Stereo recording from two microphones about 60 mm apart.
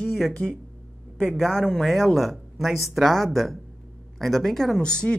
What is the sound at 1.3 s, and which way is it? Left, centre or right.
Speech, centre.